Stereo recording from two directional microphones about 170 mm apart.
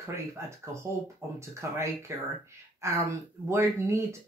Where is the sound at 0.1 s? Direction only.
15° right (ahead or behind).